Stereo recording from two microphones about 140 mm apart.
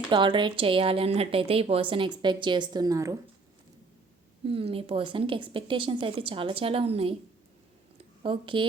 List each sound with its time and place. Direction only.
0.1 s a woman's voice: 35° right (ahead or behind)
4.4 s a woman's voice: 40° right (ahead or behind)
8.2 s a woman's voice: 35° right (ahead or behind)